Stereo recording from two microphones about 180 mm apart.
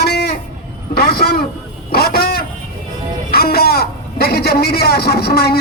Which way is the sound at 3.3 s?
60° left (ahead or behind).